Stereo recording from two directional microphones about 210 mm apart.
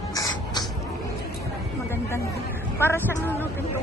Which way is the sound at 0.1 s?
15° left (ahead or behind).